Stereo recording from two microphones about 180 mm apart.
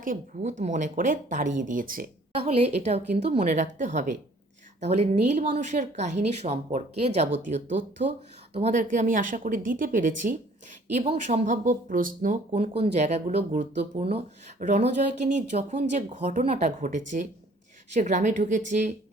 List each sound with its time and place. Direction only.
0.0 s speech: 45° right (ahead or behind)
2.4 s speech: 35° right (ahead or behind)
8.5 s speech: 40° right (ahead or behind)